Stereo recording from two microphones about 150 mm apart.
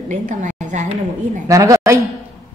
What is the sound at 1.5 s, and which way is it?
Speech, 20° right (ahead or behind).